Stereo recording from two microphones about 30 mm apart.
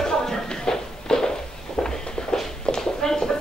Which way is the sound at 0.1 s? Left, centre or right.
Left.